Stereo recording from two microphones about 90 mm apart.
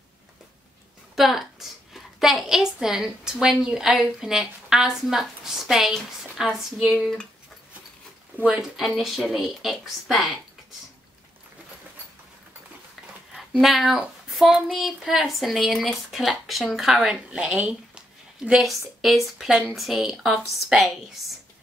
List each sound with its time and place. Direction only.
1.1 s speech: centre (ahead or behind)
8.5 s speech: 5° right (ahead or behind)
13.3 s speech: centre (ahead or behind)